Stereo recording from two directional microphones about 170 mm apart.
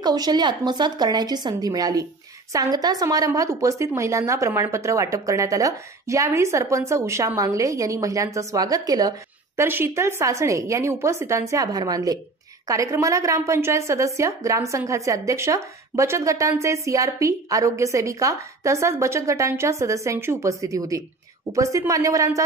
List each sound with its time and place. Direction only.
0.0 s a woman's voice: 25° right (ahead or behind)